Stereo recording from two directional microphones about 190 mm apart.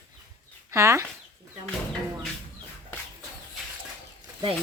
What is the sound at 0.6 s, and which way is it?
Speech, 15° right (ahead or behind).